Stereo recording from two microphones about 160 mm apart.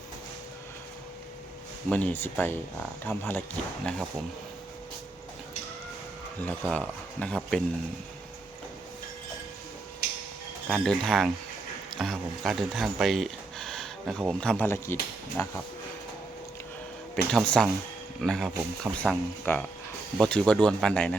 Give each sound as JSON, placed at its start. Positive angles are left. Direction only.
{"t": 1.9, "sound": "speech", "side_deg": 10}
{"t": 6.4, "sound": "speech", "side_deg": 5}
{"t": 10.7, "sound": "speech", "side_deg": 0}
{"t": 14.4, "sound": "speech", "side_deg": 10}
{"t": 17.3, "sound": "speech", "side_deg": 0}